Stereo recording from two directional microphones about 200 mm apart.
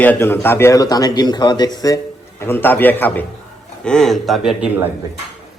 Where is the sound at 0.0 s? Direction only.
10° left (ahead or behind); by 4.9 s 5° right (ahead or behind).